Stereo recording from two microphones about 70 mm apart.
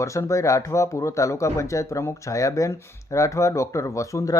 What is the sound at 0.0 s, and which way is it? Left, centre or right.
Speech, left.